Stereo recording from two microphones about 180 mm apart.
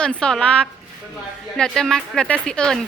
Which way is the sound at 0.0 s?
5° left (ahead or behind).